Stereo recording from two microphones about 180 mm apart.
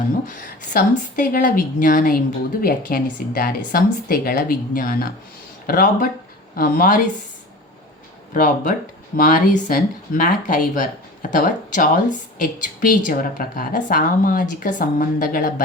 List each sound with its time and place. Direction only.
0.3 s a woman's voice: 50° left (ahead or behind)
8.3 s a woman's voice: 45° left (ahead or behind)